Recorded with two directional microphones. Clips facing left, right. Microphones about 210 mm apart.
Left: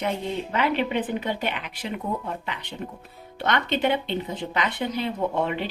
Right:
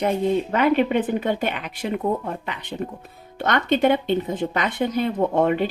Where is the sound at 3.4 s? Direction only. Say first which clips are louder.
Right 5 dB; 45° right (ahead or behind).